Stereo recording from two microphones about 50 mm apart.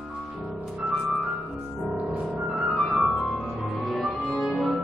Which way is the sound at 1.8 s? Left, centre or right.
Right.